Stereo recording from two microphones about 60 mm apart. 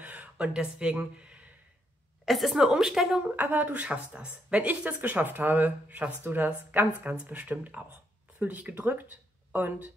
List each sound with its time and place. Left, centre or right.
0.0 s a sound: right
2.2 s a woman's voice: centre
3.3 s speech: right